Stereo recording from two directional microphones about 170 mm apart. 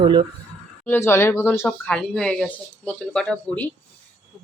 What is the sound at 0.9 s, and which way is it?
Speech, 15° left (ahead or behind).